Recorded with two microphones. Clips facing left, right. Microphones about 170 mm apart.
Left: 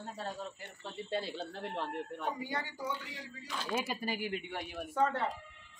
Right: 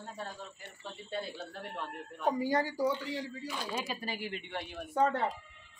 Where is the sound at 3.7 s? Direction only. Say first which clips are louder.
Left 6 dB; 10° left (ahead or behind).